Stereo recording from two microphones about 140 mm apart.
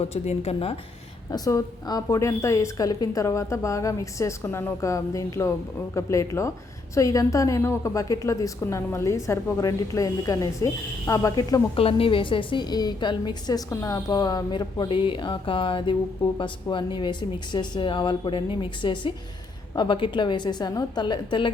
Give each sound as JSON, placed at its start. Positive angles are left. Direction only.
{"t": 0.0, "sound": "a woman's voice", "side_deg": 45}
{"t": 1.3, "sound": "a woman's voice", "side_deg": 25}
{"t": 11.8, "sound": "a woman's voice", "side_deg": 40}